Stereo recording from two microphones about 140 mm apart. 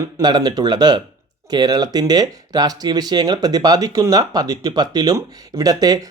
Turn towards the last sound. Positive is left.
turn(degrees=-25)  # may be behind; listen again after turning